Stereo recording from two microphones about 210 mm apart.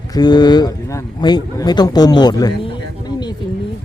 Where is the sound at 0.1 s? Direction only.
20° left (ahead or behind).